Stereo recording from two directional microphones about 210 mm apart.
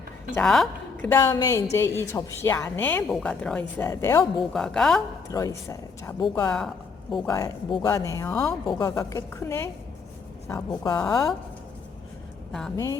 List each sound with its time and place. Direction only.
0.3 s speech: centre (ahead or behind)
4.5 s a woman's voice: 5° left (ahead or behind)
5.3 s speech: 15° left (ahead or behind)
7.1 s a woman's voice: centre (ahead or behind)
7.3 s speech: 15° left (ahead or behind)
12.5 s a woman's voice: 5° left (ahead or behind)
12.7 s speech: 15° left (ahead or behind)